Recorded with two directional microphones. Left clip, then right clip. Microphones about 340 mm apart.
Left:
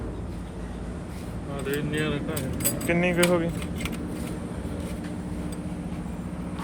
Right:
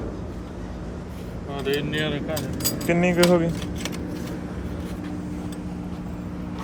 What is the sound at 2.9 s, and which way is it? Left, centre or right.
Speech, centre.